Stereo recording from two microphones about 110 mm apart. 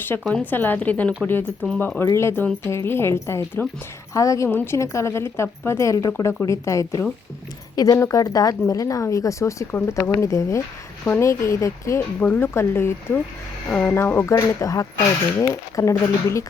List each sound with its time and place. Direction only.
0.1 s a woman's voice: 20° left (ahead or behind)
2.0 s a woman's voice: 25° left (ahead or behind)
4.4 s a woman's voice: 20° left (ahead or behind)